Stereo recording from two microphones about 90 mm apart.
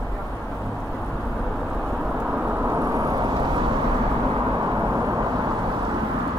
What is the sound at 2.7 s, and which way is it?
Vehicle, 40° right (ahead or behind).